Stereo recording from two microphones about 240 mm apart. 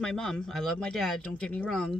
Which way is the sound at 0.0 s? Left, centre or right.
Centre.